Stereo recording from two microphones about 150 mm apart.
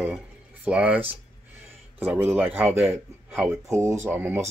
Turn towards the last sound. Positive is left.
turn(degrees=-15)  # may be behind; listen again after turning